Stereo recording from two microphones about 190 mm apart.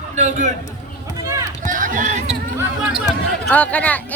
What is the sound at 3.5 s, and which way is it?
Speech, 10° left (ahead or behind).